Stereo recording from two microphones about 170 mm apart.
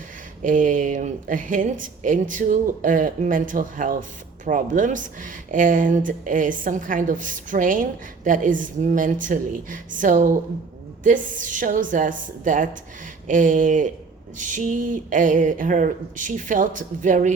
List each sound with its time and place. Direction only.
0.4 s speech: 50° right (ahead or behind)